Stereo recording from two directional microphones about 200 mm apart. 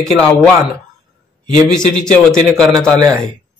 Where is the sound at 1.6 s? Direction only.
5° left (ahead or behind).